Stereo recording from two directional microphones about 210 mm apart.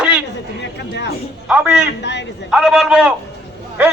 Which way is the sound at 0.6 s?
55° left (ahead or behind).